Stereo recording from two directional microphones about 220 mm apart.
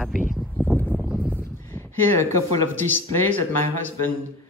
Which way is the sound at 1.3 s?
10° left (ahead or behind).